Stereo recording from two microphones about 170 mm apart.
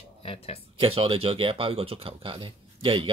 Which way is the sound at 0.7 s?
35° right (ahead or behind).